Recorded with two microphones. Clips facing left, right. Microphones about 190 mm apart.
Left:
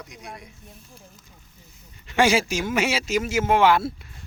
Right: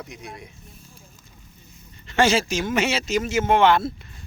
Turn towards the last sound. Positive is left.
turn(degrees=5)  # may be behind; listen again after turning